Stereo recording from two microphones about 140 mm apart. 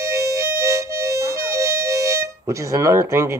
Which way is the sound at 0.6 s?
20° right (ahead or behind).